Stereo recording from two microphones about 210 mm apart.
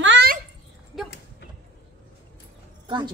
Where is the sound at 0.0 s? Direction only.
60° right (ahead or behind).